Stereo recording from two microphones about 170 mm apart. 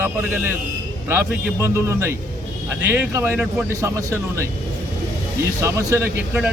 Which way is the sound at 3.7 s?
15° right (ahead or behind).